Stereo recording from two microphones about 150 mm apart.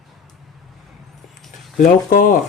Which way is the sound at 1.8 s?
65° left (ahead or behind).